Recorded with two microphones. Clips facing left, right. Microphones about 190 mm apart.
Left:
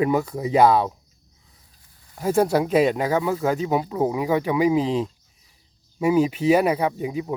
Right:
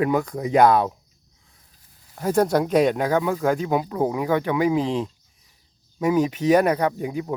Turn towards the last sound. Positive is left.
turn(degrees=5)  # may be behind; listen again after turning